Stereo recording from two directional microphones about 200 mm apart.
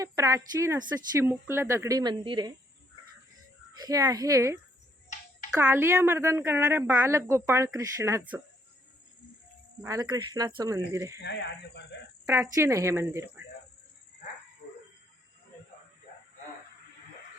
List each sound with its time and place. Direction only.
0.0 s a woman's voice: 15° right (ahead or behind)
3.8 s a woman's voice: 15° right (ahead or behind)
5.0 s music: 40° left (ahead or behind)
5.5 s a woman's voice: 15° right (ahead or behind)
9.8 s a woman's voice: 15° right (ahead or behind)
11.2 s speech: 60° left (ahead or behind)
12.2 s a woman's voice: 10° right (ahead or behind)
14.6 s a sound: 50° left (ahead or behind)